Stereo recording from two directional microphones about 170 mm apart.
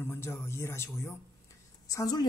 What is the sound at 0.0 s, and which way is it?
Speech, 15° left (ahead or behind).